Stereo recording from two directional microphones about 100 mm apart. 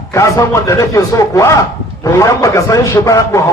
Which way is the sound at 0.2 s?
30° left (ahead or behind).